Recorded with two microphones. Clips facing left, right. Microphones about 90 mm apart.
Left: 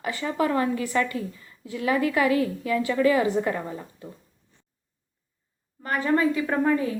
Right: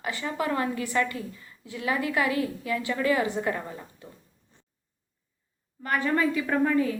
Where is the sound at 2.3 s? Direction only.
35° left (ahead or behind).